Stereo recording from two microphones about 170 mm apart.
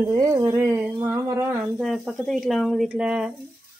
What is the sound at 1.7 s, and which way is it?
A woman's voice, centre (ahead or behind).